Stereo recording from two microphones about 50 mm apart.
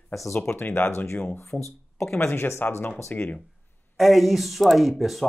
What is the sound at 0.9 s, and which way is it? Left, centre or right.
Speech, left.